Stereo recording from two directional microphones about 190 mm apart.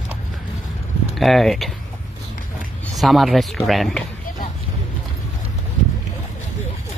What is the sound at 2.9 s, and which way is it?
Speech, centre (ahead or behind).